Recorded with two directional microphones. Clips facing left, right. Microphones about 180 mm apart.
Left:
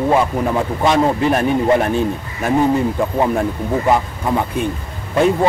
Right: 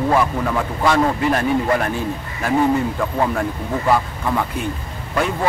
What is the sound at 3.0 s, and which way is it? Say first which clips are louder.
A man's voice: left 3 dB; 20° left (ahead or behind).